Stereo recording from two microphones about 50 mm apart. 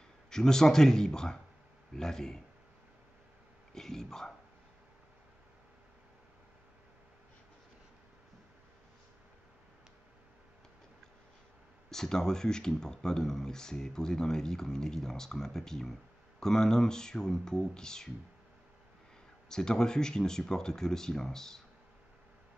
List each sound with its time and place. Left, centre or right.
0.3 s speech: centre
3.7 s speech: centre
11.9 s speech: centre
19.5 s speech: centre